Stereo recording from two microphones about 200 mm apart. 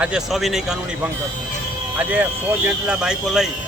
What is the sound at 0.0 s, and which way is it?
Speech, centre (ahead or behind).